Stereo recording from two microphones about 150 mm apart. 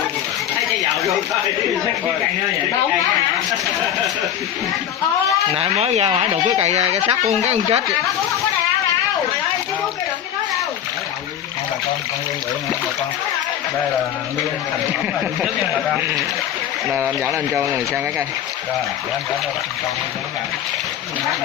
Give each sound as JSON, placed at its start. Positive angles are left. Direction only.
{"t": 5.5, "sound": "speech", "side_deg": -45}
{"t": 16.9, "sound": "speech", "side_deg": -15}